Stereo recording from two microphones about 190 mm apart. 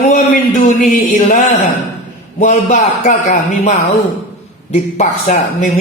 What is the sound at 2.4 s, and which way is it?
A man's voice, 40° left (ahead or behind).